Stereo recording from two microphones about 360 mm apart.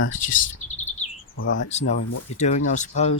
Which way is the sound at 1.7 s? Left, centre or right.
Centre.